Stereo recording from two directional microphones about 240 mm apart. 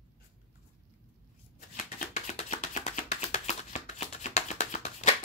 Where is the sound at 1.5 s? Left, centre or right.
Left.